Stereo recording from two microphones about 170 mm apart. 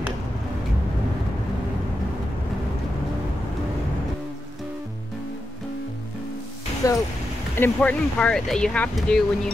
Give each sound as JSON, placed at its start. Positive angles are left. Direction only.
{"t": 6.8, "sound": "speech", "side_deg": 20}